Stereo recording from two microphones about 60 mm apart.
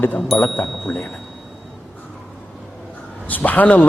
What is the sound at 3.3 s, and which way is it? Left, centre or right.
Speech, left.